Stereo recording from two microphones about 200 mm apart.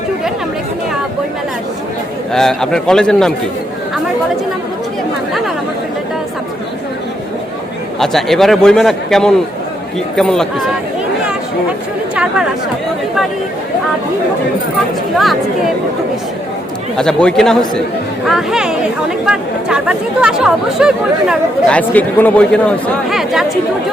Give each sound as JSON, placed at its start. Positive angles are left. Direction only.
{"t": 2.3, "sound": "speech", "side_deg": 0}
{"t": 7.9, "sound": "speech", "side_deg": 0}
{"t": 12.1, "sound": "chatter", "side_deg": -5}
{"t": 17.0, "sound": "speech", "side_deg": 5}
{"t": 21.8, "sound": "speech", "side_deg": 5}